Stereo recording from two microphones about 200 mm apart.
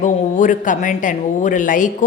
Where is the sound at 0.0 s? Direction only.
40° left (ahead or behind).